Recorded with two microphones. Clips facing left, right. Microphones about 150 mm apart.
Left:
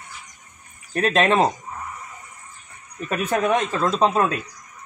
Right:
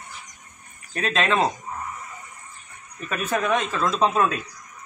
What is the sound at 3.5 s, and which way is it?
Speech, 25° left (ahead or behind).